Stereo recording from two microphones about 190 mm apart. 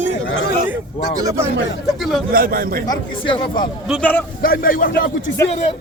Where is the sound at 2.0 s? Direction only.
Centre (ahead or behind).